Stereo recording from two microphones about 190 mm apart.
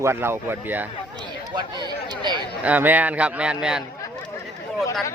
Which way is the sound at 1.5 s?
25° right (ahead or behind).